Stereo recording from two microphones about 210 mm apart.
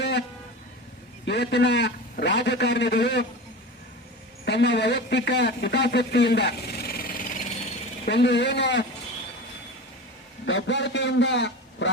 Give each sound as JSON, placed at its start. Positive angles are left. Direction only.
{"t": 0.0, "sound": "vehicle", "side_deg": 55}
{"t": 1.2, "sound": "a man's voice", "side_deg": 55}
{"t": 4.4, "sound": "speech", "side_deg": 55}
{"t": 8.0, "sound": "a man's voice", "side_deg": 55}
{"t": 10.4, "sound": "a man's voice", "side_deg": 60}